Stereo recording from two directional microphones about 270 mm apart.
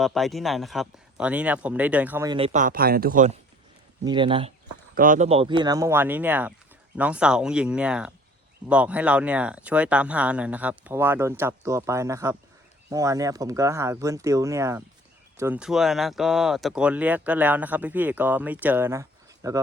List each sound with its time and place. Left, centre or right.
0.0 s speech: centre; by 3.3 s right
4.0 s speech: centre